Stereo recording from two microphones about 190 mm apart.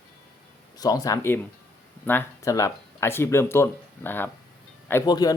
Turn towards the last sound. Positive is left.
turn(degrees=20)  # may be behind; listen again after turning